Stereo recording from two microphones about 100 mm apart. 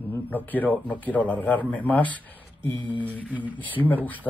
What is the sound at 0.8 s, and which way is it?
Speech, 15° left (ahead or behind).